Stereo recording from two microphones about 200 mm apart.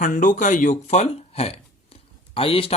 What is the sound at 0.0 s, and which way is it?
Speech, 40° left (ahead or behind).